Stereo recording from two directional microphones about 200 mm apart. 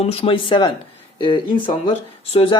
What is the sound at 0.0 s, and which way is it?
A man's voice, 30° left (ahead or behind).